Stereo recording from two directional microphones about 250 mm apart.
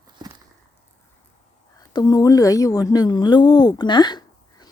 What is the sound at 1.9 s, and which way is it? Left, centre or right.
Speech, centre.